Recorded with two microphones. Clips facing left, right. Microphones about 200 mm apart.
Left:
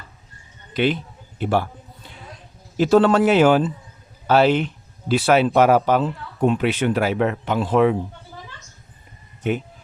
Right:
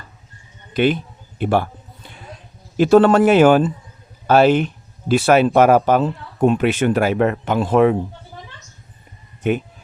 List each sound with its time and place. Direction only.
0.7 s speech: 50° right (ahead or behind)
2.7 s speech: 55° right (ahead or behind)